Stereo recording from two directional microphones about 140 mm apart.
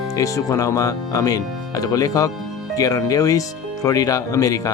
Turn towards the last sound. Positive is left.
turn(degrees=25)  # may be behind; listen again after turning